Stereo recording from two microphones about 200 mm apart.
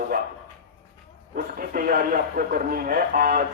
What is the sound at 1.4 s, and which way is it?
A man's voice, 45° right (ahead or behind).